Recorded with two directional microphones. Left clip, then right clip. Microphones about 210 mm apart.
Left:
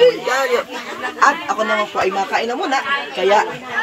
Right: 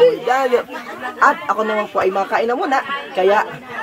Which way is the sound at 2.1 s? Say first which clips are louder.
Right 2 dB; 10° right (ahead or behind).